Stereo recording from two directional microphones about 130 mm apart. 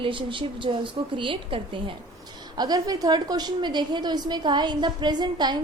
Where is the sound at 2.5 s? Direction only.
30° right (ahead or behind).